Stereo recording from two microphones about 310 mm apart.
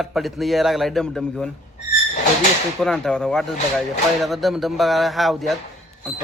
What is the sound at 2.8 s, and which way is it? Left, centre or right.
Speech, centre.